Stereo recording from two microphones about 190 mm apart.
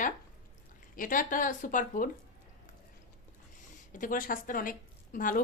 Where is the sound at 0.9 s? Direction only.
45° left (ahead or behind).